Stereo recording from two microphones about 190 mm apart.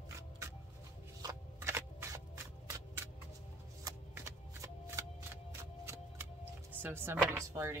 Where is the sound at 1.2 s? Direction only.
15° right (ahead or behind).